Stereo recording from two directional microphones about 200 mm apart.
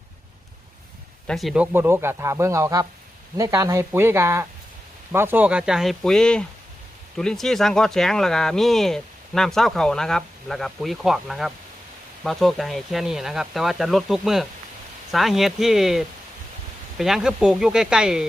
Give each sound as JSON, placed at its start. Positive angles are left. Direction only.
{"t": 1.3, "sound": "speech", "side_deg": 0}